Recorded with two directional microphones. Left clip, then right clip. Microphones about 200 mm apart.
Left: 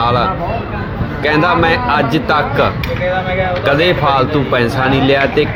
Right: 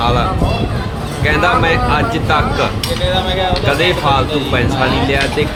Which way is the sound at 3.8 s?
20° left (ahead or behind).